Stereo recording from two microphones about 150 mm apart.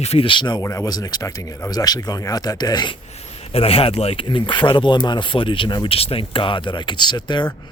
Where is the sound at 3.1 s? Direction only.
45° left (ahead or behind).